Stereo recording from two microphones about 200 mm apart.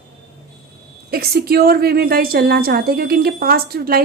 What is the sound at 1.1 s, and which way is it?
A woman's voice, 50° right (ahead or behind).